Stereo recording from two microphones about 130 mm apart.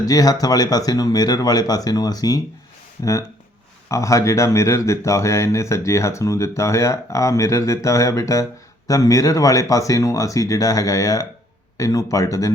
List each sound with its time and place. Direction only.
0.0 s speech: 30° left (ahead or behind)